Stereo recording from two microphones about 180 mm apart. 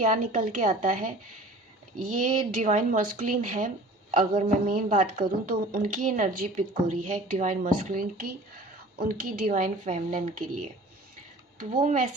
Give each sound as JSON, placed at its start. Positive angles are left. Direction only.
{"t": 0.0, "sound": "a woman's voice", "side_deg": -45}
{"t": 11.7, "sound": "a woman's voice", "side_deg": -45}